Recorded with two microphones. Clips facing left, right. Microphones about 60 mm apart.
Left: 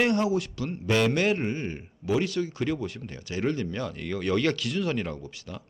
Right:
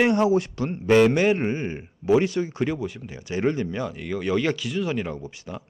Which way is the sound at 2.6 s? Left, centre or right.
Centre.